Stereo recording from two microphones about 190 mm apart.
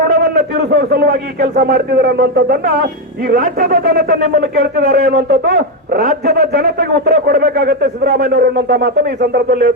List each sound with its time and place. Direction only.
0.0 s speech: 55° right (ahead or behind)